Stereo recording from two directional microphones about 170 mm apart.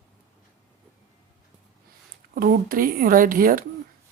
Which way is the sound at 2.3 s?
60° right (ahead or behind).